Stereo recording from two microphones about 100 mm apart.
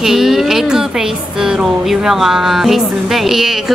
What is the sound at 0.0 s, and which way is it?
A woman's voice, 5° right (ahead or behind).